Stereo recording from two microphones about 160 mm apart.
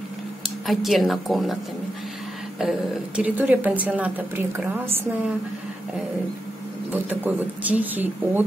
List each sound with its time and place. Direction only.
0.7 s a woman's voice: centre (ahead or behind)
2.6 s a woman's voice: 5° right (ahead or behind)
6.9 s speech: 10° right (ahead or behind)